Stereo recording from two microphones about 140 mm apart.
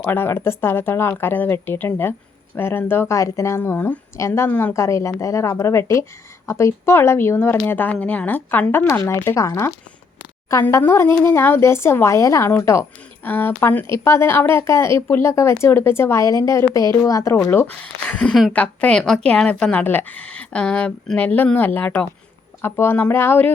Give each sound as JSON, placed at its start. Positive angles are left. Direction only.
{"t": 0.0, "sound": "a woman's voice", "side_deg": 15}